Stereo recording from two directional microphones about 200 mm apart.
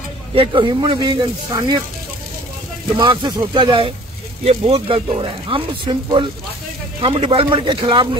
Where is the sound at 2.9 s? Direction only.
25° right (ahead or behind).